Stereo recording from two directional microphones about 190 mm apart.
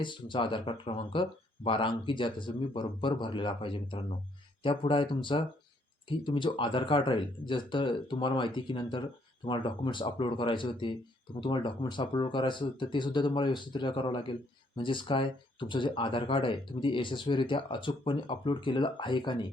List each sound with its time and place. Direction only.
0.0 s speech: 25° left (ahead or behind)